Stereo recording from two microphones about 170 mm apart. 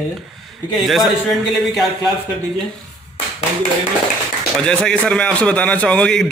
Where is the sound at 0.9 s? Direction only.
Centre (ahead or behind).